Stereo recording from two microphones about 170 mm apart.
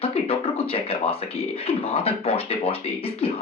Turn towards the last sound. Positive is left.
turn(degrees=35)  # may be behind; listen again after turning